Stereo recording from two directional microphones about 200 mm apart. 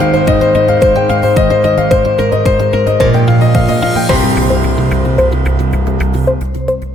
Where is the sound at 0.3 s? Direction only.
Centre (ahead or behind).